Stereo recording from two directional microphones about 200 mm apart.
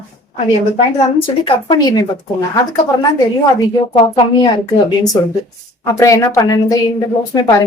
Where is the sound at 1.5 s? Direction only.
25° left (ahead or behind).